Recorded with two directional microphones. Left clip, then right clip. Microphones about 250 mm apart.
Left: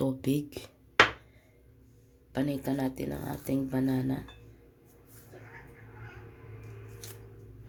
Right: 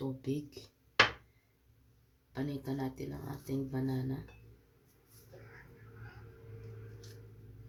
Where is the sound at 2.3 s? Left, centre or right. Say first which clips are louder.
Left 8 dB; left.